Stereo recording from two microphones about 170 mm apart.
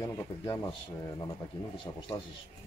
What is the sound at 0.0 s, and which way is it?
Speech, 25° left (ahead or behind).